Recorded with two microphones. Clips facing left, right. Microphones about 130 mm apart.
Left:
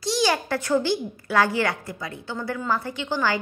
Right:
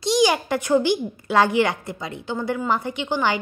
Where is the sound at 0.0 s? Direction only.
15° right (ahead or behind).